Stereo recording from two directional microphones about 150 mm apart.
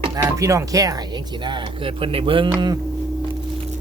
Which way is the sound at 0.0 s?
25° right (ahead or behind).